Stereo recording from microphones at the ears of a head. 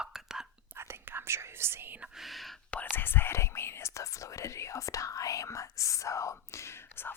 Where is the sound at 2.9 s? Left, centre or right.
Left.